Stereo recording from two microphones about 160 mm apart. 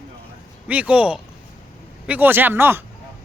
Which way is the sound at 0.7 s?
5° right (ahead or behind).